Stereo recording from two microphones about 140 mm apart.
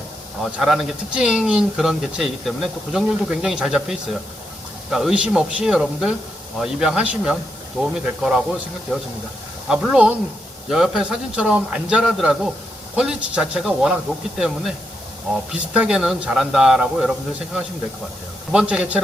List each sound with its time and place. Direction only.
0.4 s speech: 5° right (ahead or behind)
9.6 s a man's voice: 5° right (ahead or behind)